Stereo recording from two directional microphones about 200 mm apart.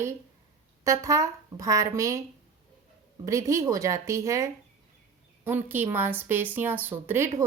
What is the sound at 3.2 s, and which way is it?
Speech, 15° right (ahead or behind).